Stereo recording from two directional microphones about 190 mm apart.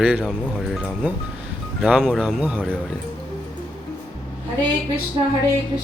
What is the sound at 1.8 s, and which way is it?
Speech, 5° right (ahead or behind).